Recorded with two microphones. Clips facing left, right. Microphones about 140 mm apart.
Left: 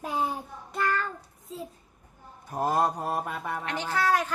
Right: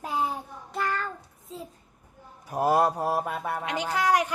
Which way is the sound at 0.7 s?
Centre (ahead or behind).